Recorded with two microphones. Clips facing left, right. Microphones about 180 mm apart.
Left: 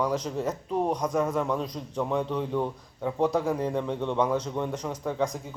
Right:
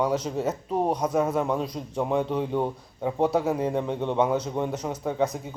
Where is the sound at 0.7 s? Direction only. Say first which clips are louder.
Right 1 dB; 35° right (ahead or behind).